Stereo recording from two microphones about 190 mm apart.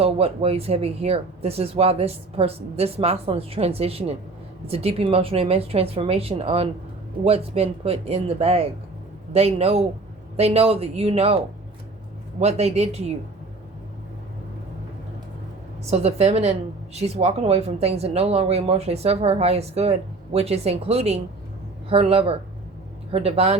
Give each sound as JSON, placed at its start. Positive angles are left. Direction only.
{"t": 0.0, "sound": "a woman's voice", "side_deg": -30}
{"t": 12.4, "sound": "a woman's voice", "side_deg": -35}
{"t": 15.9, "sound": "a woman's voice", "side_deg": -35}